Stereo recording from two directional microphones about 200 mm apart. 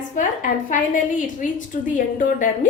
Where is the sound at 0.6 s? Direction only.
40° left (ahead or behind).